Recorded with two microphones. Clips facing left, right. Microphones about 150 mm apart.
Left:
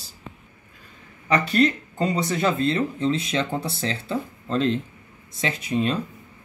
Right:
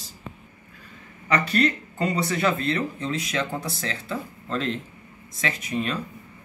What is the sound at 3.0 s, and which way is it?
Speech, 25° left (ahead or behind).